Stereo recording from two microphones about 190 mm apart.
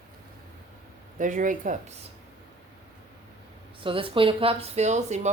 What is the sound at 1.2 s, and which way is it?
Speech, 45° right (ahead or behind).